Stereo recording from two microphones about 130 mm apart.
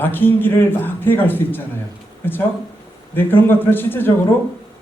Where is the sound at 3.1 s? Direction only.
15° left (ahead or behind).